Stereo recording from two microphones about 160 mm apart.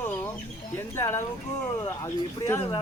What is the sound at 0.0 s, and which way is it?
Chicken, 10° left (ahead or behind).